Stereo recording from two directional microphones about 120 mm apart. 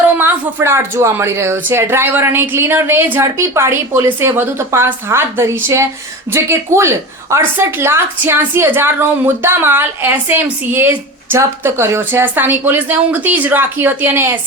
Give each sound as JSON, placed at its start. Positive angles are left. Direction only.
{"t": 0.2, "sound": "a woman's voice", "side_deg": -20}